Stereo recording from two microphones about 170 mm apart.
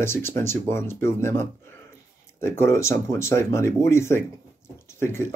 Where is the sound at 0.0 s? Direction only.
15° left (ahead or behind).